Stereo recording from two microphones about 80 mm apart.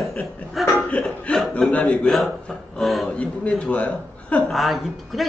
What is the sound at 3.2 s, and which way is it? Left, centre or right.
A man's voice, centre.